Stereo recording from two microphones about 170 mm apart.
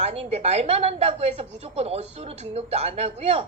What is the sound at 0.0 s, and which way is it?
A woman's voice, 40° right (ahead or behind).